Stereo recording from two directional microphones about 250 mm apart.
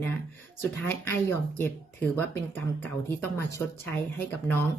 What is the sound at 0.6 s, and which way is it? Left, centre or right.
Speech, centre.